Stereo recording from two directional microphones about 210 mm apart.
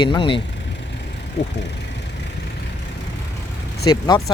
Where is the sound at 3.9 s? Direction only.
20° left (ahead or behind).